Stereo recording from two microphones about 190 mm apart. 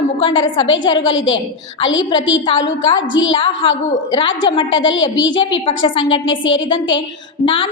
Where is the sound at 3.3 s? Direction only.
25° left (ahead or behind).